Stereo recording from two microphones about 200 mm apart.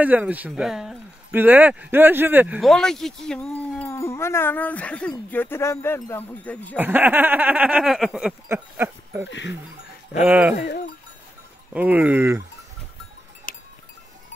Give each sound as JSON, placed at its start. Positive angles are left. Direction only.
{"t": 0.0, "sound": "speech", "side_deg": -10}
{"t": 6.8, "sound": "speech", "side_deg": -10}
{"t": 11.7, "sound": "speech", "side_deg": -10}
{"t": 13.5, "sound": "sheep", "side_deg": 45}